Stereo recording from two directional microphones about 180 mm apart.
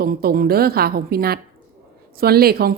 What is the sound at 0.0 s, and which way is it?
A woman's voice, 55° right (ahead or behind).